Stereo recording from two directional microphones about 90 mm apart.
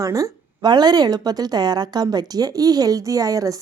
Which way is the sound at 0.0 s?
40° right (ahead or behind).